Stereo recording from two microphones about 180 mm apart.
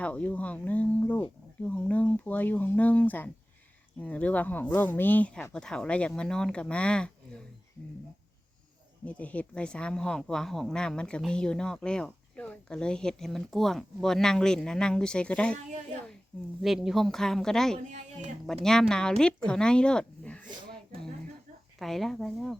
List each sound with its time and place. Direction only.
0.0 s speech: 5° left (ahead or behind)
9.0 s speech: 10° left (ahead or behind)
16.6 s speech: centre (ahead or behind)
17.9 s speech: 40° right (ahead or behind)
18.4 s a woman's voice: centre (ahead or behind)
21.8 s speech: centre (ahead or behind)